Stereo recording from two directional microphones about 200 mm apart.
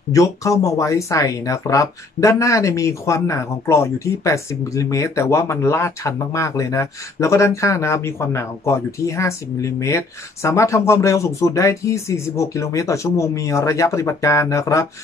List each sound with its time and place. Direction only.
0.1 s speech: 15° left (ahead or behind)